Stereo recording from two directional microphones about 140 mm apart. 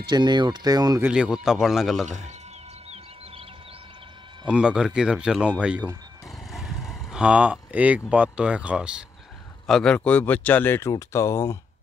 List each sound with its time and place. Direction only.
0.0 s speech: 30° right (ahead or behind)
1.0 s speech: 5° right (ahead or behind)
2.0 s speech: 60° right (ahead or behind)
4.5 s speech: 5° right (ahead or behind)
9.7 s speech: 5° left (ahead or behind); by 11.5 s 20° left (ahead or behind)